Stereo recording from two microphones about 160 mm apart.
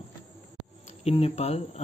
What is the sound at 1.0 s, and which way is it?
Speech, 40° left (ahead or behind).